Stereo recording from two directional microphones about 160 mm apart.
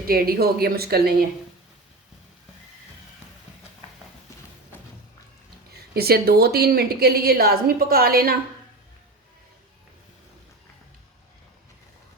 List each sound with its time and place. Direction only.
0.1 s a woman's voice: 70° right (ahead or behind)
5.7 s a woman's voice: 75° right (ahead or behind)